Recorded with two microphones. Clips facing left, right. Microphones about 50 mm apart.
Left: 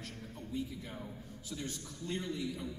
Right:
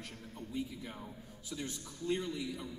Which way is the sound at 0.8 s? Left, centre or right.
Centre.